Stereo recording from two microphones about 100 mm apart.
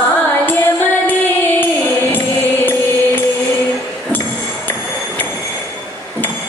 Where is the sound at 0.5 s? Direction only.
20° left (ahead or behind).